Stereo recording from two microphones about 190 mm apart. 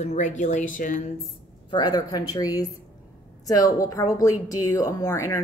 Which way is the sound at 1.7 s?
20° left (ahead or behind).